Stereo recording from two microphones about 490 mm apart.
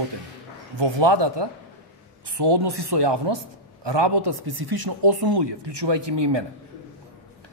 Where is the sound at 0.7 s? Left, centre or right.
Right.